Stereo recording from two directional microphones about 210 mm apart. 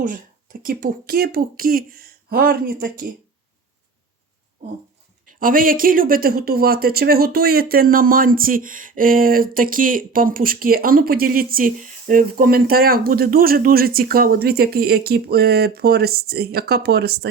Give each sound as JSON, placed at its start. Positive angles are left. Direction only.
{"t": 0.6, "sound": "speech", "side_deg": -40}
{"t": 5.2, "sound": "speech", "side_deg": -40}